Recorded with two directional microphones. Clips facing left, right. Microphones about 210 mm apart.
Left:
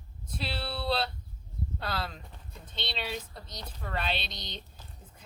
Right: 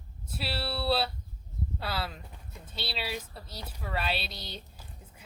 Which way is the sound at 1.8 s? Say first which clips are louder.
Even; 5° right (ahead or behind).